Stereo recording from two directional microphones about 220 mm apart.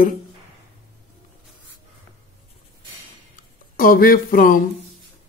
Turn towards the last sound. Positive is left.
turn(degrees=40)  # may be behind; listen again after turning